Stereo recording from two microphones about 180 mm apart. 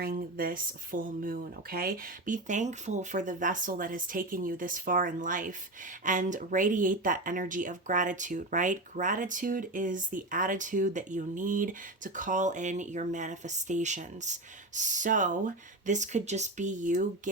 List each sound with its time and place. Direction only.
0.0 s speech: 55° right (ahead or behind)